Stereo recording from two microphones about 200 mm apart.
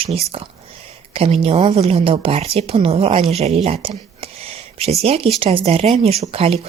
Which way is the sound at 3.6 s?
25° right (ahead or behind).